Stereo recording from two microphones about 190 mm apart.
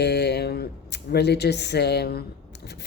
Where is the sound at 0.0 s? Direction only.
60° left (ahead or behind).